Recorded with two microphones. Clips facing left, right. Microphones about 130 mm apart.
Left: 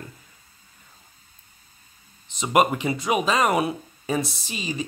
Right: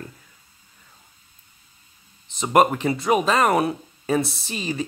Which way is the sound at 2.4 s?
5° left (ahead or behind).